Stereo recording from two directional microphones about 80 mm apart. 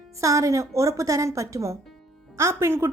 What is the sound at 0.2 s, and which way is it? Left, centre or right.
A woman's voice, right.